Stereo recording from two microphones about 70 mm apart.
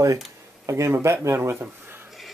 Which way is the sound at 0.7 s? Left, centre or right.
Right.